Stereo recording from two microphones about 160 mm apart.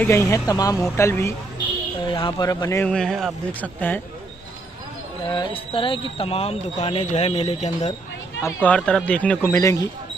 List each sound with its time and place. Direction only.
0.0 s speech: 15° left (ahead or behind)
2.0 s speech: 30° left (ahead or behind)
2.9 s speech: 5° left (ahead or behind)
5.3 s speech: 30° left (ahead or behind)
8.4 s speech: 15° left (ahead or behind)